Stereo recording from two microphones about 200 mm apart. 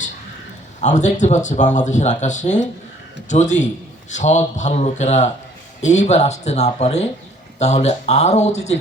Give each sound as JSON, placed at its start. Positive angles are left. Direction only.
{"t": 0.8, "sound": "speech", "side_deg": 35}